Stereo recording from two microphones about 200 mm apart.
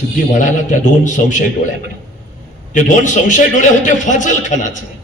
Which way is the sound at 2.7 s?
40° left (ahead or behind).